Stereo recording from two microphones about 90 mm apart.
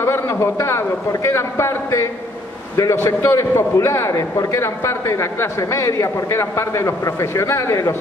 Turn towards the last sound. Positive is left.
turn(degrees=35)  # may be behind; listen again after turning